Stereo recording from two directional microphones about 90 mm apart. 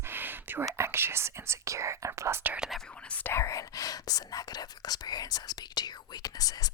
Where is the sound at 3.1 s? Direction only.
25° left (ahead or behind).